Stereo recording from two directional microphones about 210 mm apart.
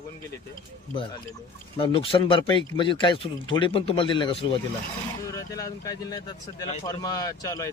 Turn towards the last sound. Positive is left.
turn(degrees=15)  # may be behind; listen again after turning